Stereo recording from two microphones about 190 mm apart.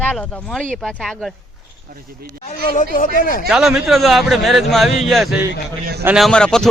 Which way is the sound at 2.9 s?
45° left (ahead or behind).